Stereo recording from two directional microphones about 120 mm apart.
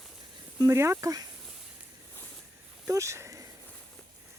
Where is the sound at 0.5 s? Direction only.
25° right (ahead or behind).